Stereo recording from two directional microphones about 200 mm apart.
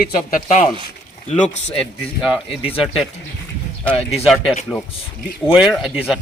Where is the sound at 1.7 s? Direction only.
Centre (ahead or behind).